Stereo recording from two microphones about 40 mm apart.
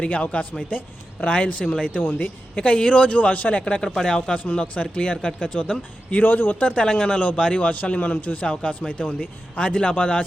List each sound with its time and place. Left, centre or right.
0.0 s speech: left
2.0 s speech: left
3.9 s speech: left
6.1 s a man's voice: left
6.6 s speech: left
6.8 s speech: left